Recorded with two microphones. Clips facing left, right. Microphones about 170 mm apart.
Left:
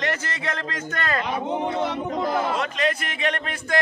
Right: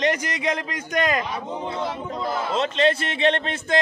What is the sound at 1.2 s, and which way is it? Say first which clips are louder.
Speech: left 4 dB; 65° left (ahead or behind).